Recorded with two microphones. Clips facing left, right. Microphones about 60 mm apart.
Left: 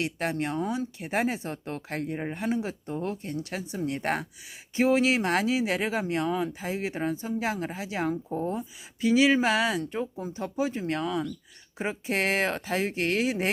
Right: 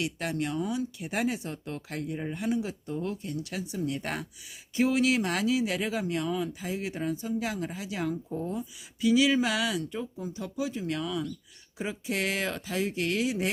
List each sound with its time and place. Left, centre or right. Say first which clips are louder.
0.0 s speech: left 2 dB; left